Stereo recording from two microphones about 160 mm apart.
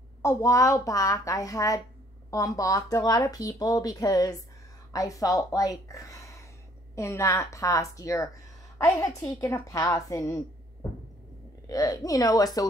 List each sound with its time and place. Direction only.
0.2 s a woman's voice: 20° left (ahead or behind)